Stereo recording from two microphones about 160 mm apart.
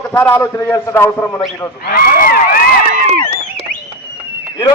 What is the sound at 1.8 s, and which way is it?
Speech, 65° left (ahead or behind).